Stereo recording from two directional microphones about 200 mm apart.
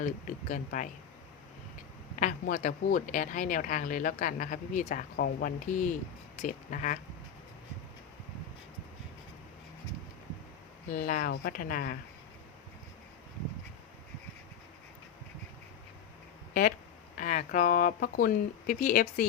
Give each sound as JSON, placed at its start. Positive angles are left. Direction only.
{"t": 0.0, "sound": "speech", "side_deg": 40}
{"t": 2.1, "sound": "speech", "side_deg": 40}
{"t": 10.8, "sound": "speech", "side_deg": 40}
{"t": 17.2, "sound": "speech", "side_deg": 40}